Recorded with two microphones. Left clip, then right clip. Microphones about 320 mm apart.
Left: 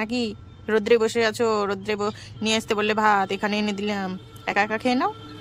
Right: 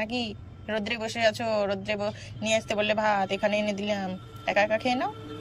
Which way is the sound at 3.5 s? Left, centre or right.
Centre.